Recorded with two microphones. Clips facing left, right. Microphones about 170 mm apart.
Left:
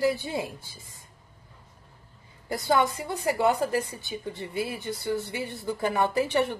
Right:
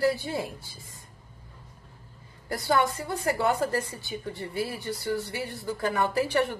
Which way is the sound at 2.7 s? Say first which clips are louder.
Left 1 dB; 15° left (ahead or behind).